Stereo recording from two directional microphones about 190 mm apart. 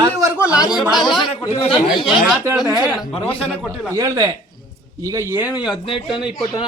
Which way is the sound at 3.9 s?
15° right (ahead or behind).